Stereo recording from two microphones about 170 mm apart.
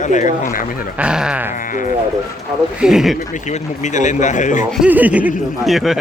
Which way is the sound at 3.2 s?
45° left (ahead or behind).